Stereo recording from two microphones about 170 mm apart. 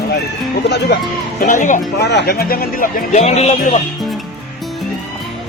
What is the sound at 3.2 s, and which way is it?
Speech, 35° left (ahead or behind).